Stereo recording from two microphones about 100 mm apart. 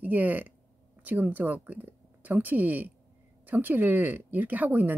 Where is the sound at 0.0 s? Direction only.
15° right (ahead or behind).